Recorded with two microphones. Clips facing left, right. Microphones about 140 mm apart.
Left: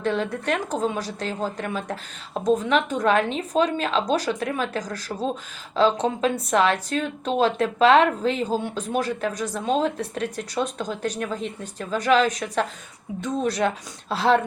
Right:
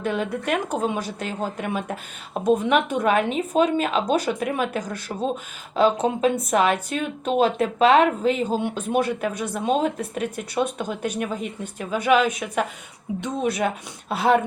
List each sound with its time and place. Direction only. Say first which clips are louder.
0.0 s speech: even; 10° right (ahead or behind)
13.1 s a woman's voice: right 3 dB; 20° right (ahead or behind)
13.4 s speech: even; 10° right (ahead or behind)